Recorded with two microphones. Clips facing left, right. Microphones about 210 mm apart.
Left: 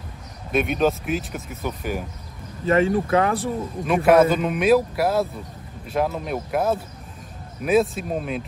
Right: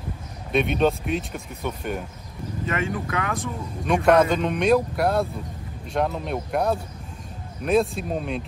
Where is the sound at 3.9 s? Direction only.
5° left (ahead or behind).